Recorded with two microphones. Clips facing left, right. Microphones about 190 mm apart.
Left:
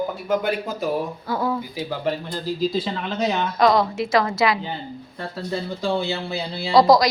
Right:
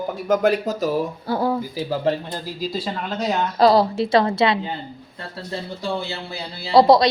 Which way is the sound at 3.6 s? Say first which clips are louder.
Right 3 dB; 30° right (ahead or behind).